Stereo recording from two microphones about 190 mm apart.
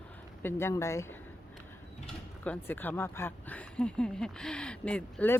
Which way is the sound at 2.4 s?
10° left (ahead or behind).